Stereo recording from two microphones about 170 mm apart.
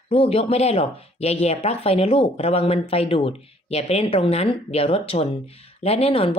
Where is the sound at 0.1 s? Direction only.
35° left (ahead or behind).